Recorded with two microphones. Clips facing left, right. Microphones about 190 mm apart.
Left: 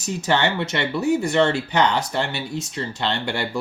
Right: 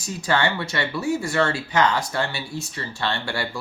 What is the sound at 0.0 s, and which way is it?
Speech, 20° left (ahead or behind).